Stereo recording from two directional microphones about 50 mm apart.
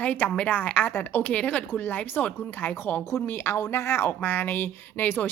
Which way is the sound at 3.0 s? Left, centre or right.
Left.